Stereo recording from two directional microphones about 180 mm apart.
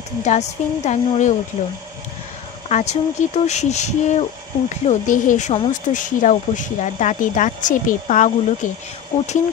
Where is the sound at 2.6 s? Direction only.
40° left (ahead or behind).